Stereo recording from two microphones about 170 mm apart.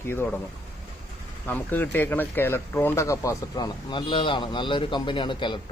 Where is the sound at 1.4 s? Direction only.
10° left (ahead or behind); by 5.6 s 30° left (ahead or behind).